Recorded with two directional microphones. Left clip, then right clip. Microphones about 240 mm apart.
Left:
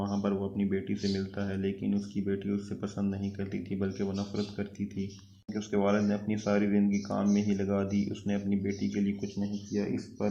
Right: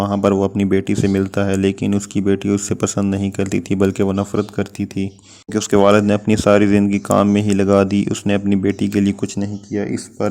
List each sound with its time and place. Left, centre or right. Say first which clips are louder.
0.0 s speech: right 17 dB; right